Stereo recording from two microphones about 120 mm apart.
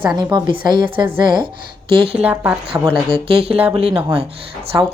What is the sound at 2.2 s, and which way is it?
Speech, 10° right (ahead or behind).